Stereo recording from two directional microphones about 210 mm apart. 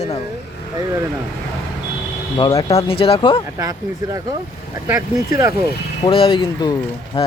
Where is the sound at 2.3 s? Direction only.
25° left (ahead or behind).